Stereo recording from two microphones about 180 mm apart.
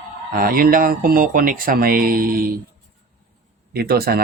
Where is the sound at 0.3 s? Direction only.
55° right (ahead or behind).